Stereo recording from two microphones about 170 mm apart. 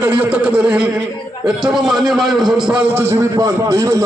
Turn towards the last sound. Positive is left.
turn(degrees=-20)  # may be behind; listen again after turning